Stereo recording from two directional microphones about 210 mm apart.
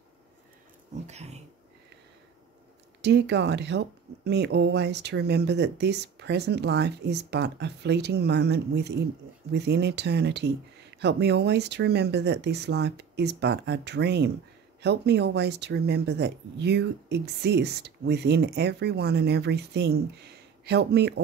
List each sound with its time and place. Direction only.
1.0 s speech: 30° right (ahead or behind)
3.0 s speech: 55° right (ahead or behind)